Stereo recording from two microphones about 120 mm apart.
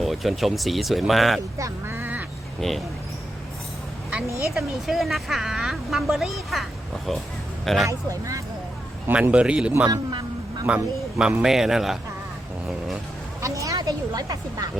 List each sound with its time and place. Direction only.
0.0 s speech: centre (ahead or behind)
1.5 s speech: 25° right (ahead or behind)
2.6 s speech: centre (ahead or behind)
4.5 s speech: centre (ahead or behind)
7.9 s speech: 25° right (ahead or behind)
9.0 s speech: 15° right (ahead or behind)
9.9 s a sound: 40° right (ahead or behind)
10.7 s speech: 10° right (ahead or behind)
13.4 s speech: 30° right (ahead or behind)